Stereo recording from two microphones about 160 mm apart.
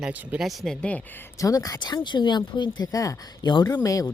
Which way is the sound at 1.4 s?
20° left (ahead or behind).